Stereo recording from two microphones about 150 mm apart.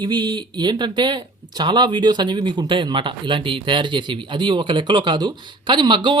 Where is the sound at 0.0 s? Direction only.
25° right (ahead or behind).